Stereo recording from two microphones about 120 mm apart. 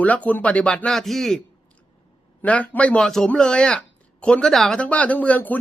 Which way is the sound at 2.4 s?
10° left (ahead or behind).